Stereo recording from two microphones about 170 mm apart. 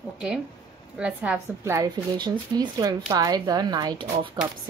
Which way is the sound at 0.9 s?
5° right (ahead or behind).